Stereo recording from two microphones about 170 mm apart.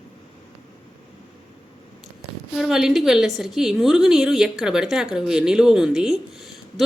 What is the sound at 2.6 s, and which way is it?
Speech, 5° right (ahead or behind).